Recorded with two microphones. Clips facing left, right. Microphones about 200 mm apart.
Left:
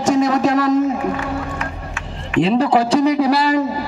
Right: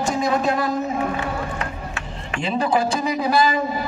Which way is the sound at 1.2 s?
35° right (ahead or behind).